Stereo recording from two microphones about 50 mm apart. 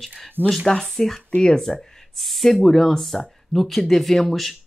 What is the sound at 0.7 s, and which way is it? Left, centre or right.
Speech, centre.